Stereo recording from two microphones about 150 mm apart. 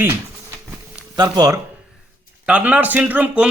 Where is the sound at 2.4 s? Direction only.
10° right (ahead or behind).